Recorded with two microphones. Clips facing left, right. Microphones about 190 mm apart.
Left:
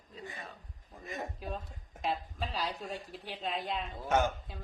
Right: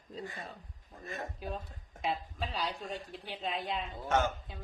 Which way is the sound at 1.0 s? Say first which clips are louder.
Left 1 dB; 15° left (ahead or behind).